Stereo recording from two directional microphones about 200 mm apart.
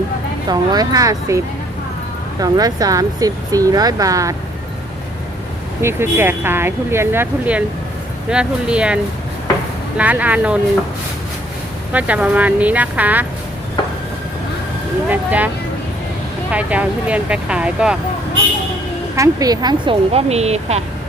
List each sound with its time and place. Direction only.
0.4 s speech: 20° right (ahead or behind)
2.4 s speech: 20° right (ahead or behind)
5.8 s speech: 10° right (ahead or behind)
10.0 s speech: 5° right (ahead or behind)
11.9 s speech: 5° right (ahead or behind)
15.1 s speech: 10° right (ahead or behind)
16.5 s speech: 5° right (ahead or behind)
19.1 s speech: 15° right (ahead or behind); by 20.8 s 30° right (ahead or behind)